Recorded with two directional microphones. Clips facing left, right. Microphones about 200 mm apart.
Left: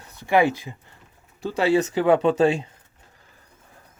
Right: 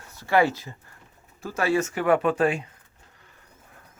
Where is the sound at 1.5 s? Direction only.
25° left (ahead or behind).